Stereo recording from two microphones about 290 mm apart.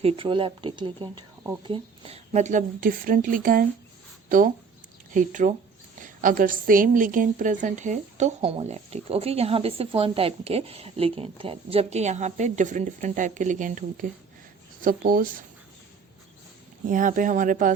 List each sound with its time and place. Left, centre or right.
0.0 s a woman's voice: centre
16.9 s a woman's voice: right